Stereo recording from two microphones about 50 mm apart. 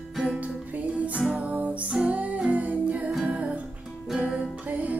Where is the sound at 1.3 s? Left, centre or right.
Right.